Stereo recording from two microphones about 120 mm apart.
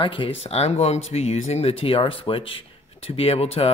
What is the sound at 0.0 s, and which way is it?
Speech, 45° left (ahead or behind).